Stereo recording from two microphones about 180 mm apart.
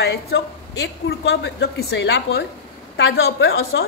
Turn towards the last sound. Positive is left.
turn(degrees=75)  # may be behind; listen again after turning